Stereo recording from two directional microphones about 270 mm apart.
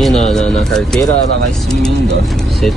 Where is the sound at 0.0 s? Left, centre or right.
Centre.